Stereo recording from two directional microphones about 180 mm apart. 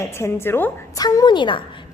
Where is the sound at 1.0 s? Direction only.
20° left (ahead or behind).